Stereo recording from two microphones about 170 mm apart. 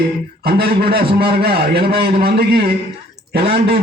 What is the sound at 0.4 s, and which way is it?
A man's voice, 70° right (ahead or behind).